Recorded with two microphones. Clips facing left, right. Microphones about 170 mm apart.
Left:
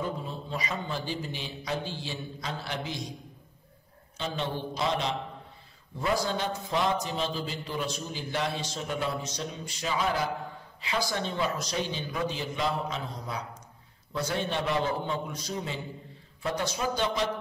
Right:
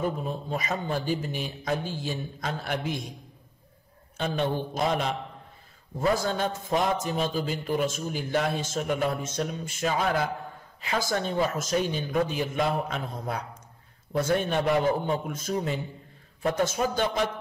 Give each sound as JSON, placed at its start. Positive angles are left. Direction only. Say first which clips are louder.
{"t": 0.3, "sound": "a man's voice", "louder": "right 4 dB", "side_deg": -50}
{"t": 4.2, "sound": "a man's voice", "louder": "right 5 dB", "side_deg": -50}